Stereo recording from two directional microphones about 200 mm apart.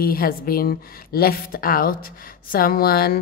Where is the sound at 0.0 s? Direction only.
45° left (ahead or behind).